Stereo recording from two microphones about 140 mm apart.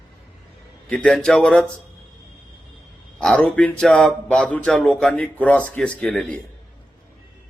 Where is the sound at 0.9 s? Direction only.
5° left (ahead or behind).